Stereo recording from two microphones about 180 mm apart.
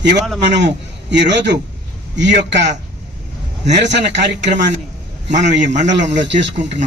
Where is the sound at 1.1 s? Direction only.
75° right (ahead or behind).